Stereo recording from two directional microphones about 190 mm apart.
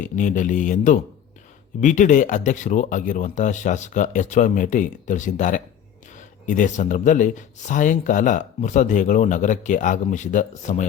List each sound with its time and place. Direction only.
0.0 s speech: 40° left (ahead or behind)